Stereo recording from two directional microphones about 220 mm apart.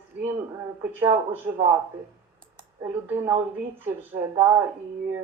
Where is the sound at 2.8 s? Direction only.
10° right (ahead or behind).